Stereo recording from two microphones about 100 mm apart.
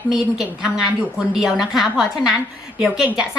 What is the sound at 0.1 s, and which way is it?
A woman's voice, 5° right (ahead or behind).